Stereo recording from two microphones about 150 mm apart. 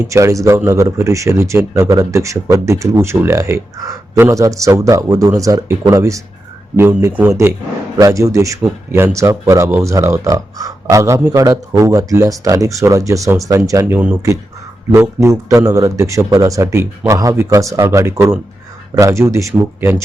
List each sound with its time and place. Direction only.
0.0 s a man's voice: 20° right (ahead or behind)